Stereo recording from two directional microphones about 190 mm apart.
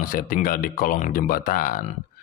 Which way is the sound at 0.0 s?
45° left (ahead or behind).